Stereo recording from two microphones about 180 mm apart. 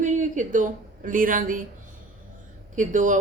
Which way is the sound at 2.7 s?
45° right (ahead or behind).